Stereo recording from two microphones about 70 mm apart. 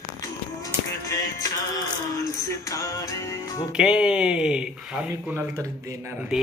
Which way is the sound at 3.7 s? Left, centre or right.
Centre.